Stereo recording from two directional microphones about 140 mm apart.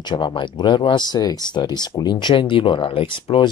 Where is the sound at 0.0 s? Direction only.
35° left (ahead or behind).